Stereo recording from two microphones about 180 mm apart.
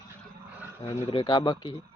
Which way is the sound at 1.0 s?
25° left (ahead or behind).